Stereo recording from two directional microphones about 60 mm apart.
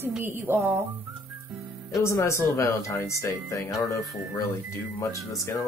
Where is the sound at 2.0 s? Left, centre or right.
Left.